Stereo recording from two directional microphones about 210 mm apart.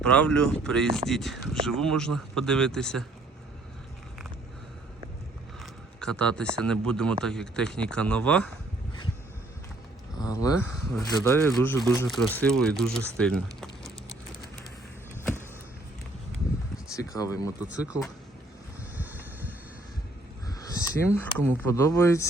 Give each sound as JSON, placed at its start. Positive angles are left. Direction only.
{"t": 0.0, "sound": "speech", "side_deg": 5}
{"t": 6.0, "sound": "speech", "side_deg": 5}
{"t": 10.2, "sound": "speech", "side_deg": 15}
{"t": 16.9, "sound": "speech", "side_deg": 15}
{"t": 17.6, "sound": "speech", "side_deg": -5}
{"t": 18.9, "sound": "a sound", "side_deg": -10}
{"t": 20.5, "sound": "speech", "side_deg": 15}